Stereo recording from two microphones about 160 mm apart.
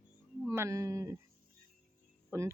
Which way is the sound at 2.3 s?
15° right (ahead or behind).